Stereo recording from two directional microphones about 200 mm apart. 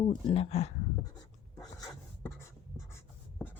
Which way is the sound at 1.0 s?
20° left (ahead or behind).